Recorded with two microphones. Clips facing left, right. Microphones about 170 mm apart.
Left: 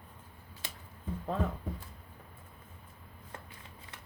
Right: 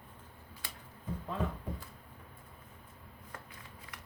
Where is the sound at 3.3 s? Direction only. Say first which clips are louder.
Left 1 dB; 25° left (ahead or behind).